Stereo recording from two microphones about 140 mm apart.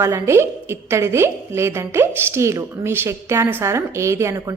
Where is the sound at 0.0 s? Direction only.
20° right (ahead or behind).